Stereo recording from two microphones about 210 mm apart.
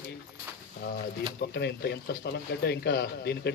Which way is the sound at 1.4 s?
50° left (ahead or behind).